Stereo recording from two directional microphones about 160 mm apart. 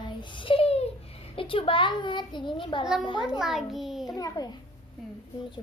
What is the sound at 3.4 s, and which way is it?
Speech, centre (ahead or behind).